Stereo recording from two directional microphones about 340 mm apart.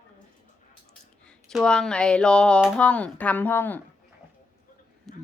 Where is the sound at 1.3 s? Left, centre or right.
Centre.